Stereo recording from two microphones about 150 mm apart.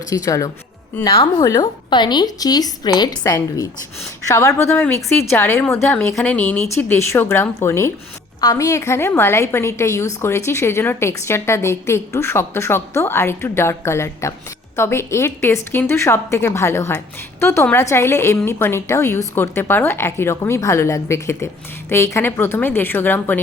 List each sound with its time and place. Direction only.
0.1 s a woman's voice: 20° left (ahead or behind)
1.2 s a woman's voice: 35° left (ahead or behind); by 23.4 s 15° left (ahead or behind)